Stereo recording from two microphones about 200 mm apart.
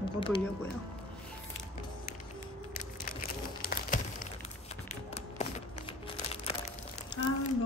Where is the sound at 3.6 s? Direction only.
40° left (ahead or behind).